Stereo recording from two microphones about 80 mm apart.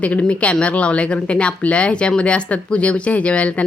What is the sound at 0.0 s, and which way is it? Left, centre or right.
A woman's voice, centre.